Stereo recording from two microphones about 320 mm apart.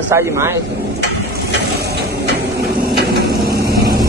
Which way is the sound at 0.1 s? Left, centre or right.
Centre.